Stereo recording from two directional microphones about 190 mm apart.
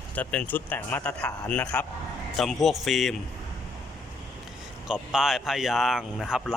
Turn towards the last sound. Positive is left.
turn(degrees=0)  # may be behind; listen again after turning